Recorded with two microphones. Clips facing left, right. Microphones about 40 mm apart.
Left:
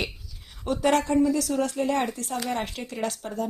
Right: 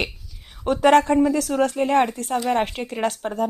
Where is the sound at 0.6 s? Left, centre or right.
Right.